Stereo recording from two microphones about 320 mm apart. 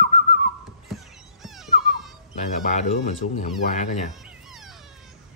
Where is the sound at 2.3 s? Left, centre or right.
Left.